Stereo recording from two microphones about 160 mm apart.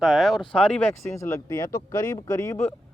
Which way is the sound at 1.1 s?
20° left (ahead or behind).